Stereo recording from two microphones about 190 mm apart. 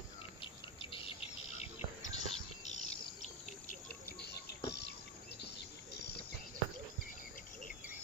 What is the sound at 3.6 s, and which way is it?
Cricket, 55° left (ahead or behind).